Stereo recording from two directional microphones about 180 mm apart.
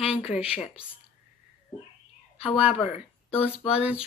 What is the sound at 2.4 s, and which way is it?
A woman's voice, 35° left (ahead or behind).